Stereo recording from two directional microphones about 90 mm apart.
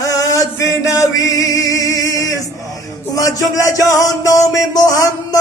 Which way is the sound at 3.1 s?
40° left (ahead or behind).